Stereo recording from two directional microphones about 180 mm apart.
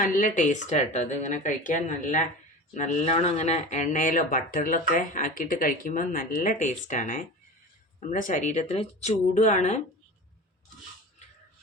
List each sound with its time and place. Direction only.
0.0 s speech: 50° left (ahead or behind)